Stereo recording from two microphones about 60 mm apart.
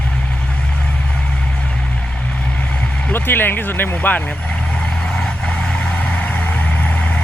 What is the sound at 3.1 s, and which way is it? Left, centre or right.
Speech, left.